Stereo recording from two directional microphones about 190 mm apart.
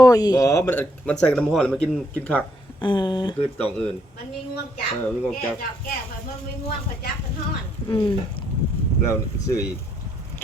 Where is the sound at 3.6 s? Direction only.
5° left (ahead or behind).